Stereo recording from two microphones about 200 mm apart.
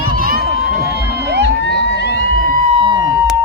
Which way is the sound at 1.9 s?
55° left (ahead or behind).